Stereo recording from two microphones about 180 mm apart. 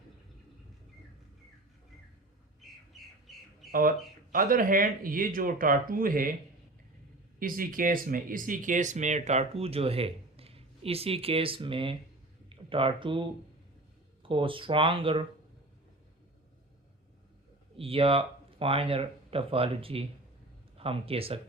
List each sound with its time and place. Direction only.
3.3 s squawk: centre (ahead or behind)
3.7 s speech: 50° right (ahead or behind)
7.3 s speech: 50° right (ahead or behind); by 15.2 s 30° right (ahead or behind)
17.7 s speech: 30° right (ahead or behind)